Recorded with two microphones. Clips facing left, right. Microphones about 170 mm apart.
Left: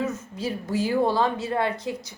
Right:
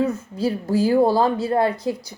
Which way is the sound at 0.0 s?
35° right (ahead or behind).